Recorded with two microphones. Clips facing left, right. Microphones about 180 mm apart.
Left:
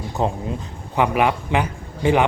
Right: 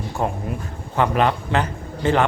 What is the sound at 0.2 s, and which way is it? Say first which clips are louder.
A man's voice: left 2 dB; 20° left (ahead or behind).